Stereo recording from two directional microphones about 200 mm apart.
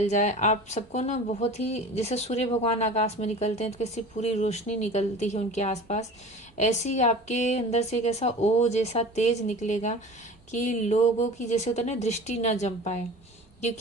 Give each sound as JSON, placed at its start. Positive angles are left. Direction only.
{"t": 0.0, "sound": "speech", "side_deg": 35}